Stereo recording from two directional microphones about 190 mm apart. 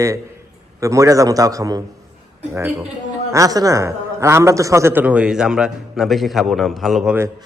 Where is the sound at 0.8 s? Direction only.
15° right (ahead or behind); by 7.2 s centre (ahead or behind).